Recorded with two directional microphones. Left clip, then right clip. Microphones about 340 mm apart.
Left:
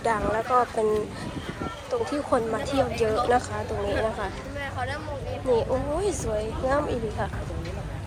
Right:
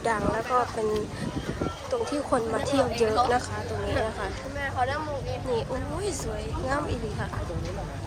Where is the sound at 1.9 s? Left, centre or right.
Centre.